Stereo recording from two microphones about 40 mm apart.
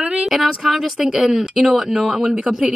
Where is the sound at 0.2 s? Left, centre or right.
Centre.